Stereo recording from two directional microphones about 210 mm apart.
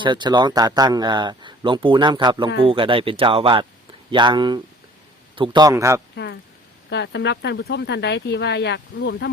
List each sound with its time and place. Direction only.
0.0 s speech: 20° right (ahead or behind)
6.9 s speech: 55° left (ahead or behind)